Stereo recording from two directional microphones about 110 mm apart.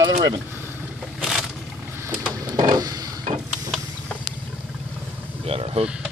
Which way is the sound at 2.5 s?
35° right (ahead or behind).